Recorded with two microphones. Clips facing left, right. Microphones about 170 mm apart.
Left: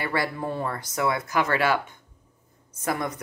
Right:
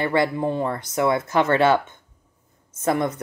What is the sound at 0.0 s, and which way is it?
A woman's voice, 20° right (ahead or behind).